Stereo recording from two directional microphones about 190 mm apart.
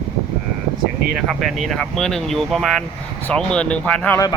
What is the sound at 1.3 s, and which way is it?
Speech, centre (ahead or behind).